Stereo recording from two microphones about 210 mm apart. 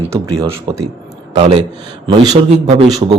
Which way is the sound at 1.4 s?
30° right (ahead or behind).